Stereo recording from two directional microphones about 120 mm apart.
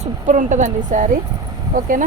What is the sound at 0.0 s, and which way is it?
A woman's voice, 90° right.